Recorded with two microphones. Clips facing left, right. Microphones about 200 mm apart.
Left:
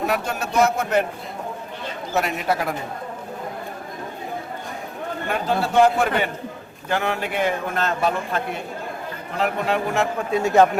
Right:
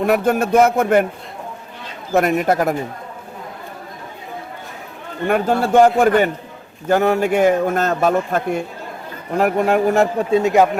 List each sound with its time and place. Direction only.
0.0 s a man's voice: 50° right (ahead or behind)
2.1 s a man's voice: 50° right (ahead or behind)
5.3 s a man's voice: 50° right (ahead or behind)